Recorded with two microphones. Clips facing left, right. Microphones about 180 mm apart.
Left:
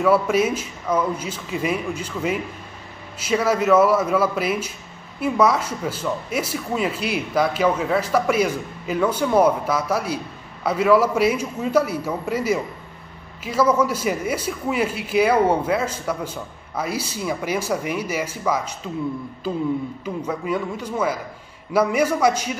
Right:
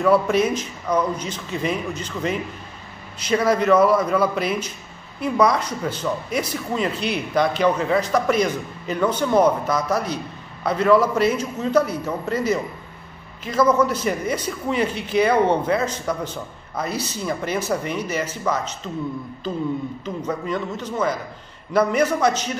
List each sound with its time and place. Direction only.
0.0 s a man's voice: 5° left (ahead or behind)